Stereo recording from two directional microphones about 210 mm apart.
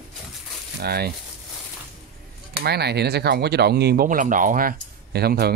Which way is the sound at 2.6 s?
50° right (ahead or behind).